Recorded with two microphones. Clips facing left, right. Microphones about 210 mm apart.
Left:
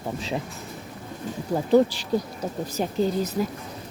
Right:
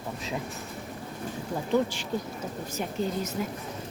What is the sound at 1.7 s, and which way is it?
Speech, 35° left (ahead or behind).